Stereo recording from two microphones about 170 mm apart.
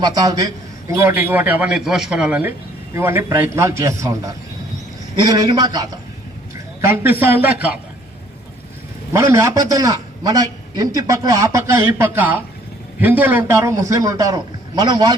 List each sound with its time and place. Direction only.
0.0 s a man's voice: 20° right (ahead or behind)
9.1 s a man's voice: 20° right (ahead or behind)